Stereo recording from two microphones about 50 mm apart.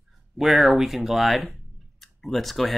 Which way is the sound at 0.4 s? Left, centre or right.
Centre.